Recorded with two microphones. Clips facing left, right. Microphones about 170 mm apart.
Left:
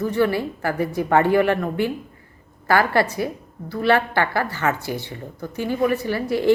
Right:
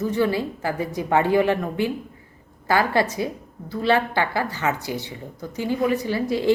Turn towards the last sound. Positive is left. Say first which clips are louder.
# left 2 dB
turn(degrees=-20)  # may be behind; listen again after turning